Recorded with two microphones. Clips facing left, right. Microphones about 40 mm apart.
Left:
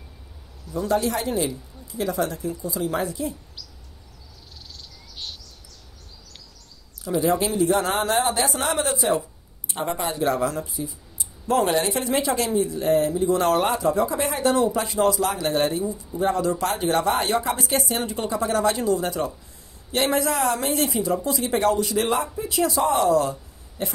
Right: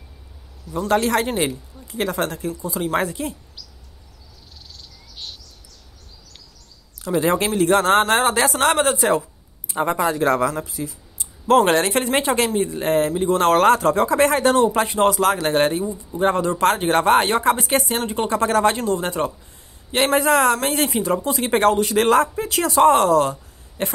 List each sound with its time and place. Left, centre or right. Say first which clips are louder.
0.8 s speech: right 4 dB; right
7.2 s speech: right 2 dB; right
10.6 s speech: right 2 dB; right
12.0 s speech: right 4 dB; right
13.6 s speech: right 6 dB; right
14.5 s speech: right 4 dB; right
15.8 s speech: right 2 dB; right
16.2 s speech: right 4 dB; right
18.3 s speech: right 4 dB; right
22.0 s speech: right 7 dB; right